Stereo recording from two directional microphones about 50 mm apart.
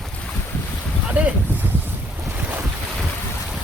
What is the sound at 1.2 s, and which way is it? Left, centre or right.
Speech, right.